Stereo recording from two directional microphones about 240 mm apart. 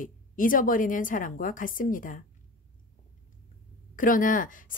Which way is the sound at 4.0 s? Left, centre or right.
Left.